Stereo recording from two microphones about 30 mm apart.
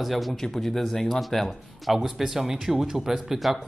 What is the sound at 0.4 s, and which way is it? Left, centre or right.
Speech, centre.